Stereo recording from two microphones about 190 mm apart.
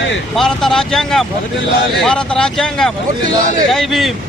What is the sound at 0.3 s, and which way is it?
Speech, centre (ahead or behind).